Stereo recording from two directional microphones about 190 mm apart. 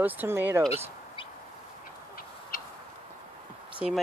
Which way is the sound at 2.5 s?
50° left (ahead or behind).